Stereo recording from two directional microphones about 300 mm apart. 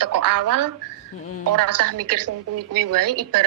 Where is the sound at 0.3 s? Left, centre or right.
Right.